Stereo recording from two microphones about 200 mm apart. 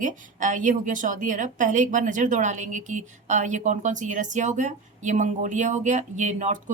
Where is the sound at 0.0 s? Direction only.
40° right (ahead or behind).